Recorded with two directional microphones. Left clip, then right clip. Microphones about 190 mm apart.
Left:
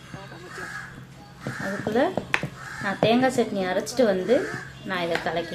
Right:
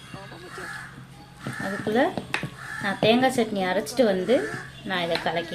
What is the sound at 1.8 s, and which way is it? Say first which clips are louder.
A woman's voice: even; 20° right (ahead or behind).